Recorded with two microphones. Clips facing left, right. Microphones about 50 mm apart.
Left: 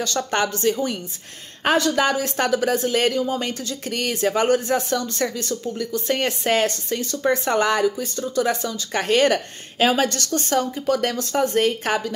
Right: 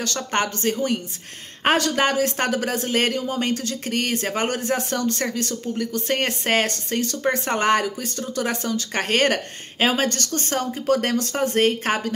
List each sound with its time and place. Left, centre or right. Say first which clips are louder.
0.3 s speech: left 1 dB; right
7.2 s speech: left 2 dB; right
9.8 s speech: left 2 dB; right
10.6 s speech: even; right